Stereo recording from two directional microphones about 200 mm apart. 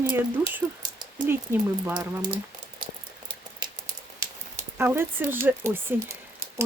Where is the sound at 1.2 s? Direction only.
10° right (ahead or behind).